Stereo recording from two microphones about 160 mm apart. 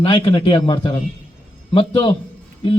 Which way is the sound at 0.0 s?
30° left (ahead or behind).